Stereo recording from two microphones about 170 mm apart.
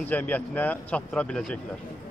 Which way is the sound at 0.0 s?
10° left (ahead or behind).